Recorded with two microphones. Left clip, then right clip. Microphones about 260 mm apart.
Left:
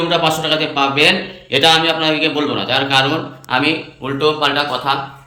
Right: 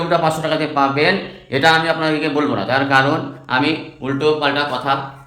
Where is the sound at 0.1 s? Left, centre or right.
Centre.